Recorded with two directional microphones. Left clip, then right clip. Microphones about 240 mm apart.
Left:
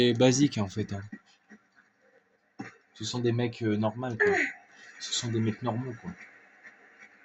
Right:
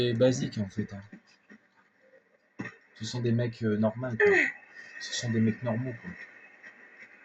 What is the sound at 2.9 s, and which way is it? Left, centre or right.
Speech, left.